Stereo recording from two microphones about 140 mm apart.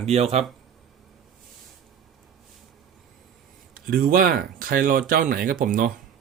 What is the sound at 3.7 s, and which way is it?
Speech, 85° right.